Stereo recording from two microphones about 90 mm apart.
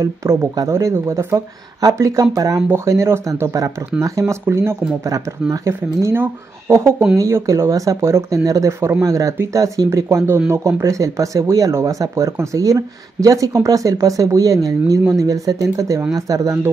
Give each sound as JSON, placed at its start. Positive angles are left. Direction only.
{"t": 0.0, "sound": "speech", "side_deg": -35}